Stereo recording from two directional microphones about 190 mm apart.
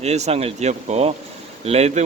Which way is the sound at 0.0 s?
35° right (ahead or behind).